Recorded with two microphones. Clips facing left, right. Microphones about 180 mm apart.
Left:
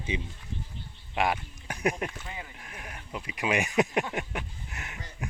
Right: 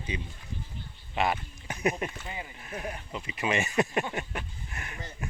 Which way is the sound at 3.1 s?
5° left (ahead or behind).